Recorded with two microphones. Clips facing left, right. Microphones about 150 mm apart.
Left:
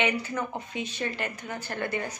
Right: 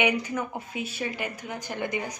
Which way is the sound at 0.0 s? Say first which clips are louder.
Right 2 dB; 10° right (ahead or behind).